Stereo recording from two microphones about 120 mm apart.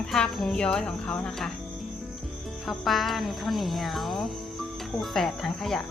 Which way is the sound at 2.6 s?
Centre (ahead or behind).